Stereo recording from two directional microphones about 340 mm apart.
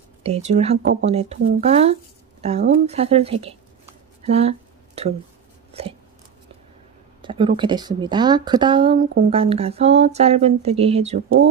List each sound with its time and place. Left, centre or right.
0.2 s speech: centre
4.2 s a sound: centre
7.2 s speech: centre